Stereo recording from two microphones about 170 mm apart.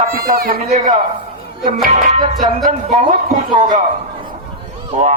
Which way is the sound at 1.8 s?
40° right (ahead or behind).